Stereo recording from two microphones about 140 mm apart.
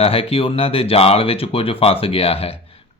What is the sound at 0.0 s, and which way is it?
Speech, 40° left (ahead or behind).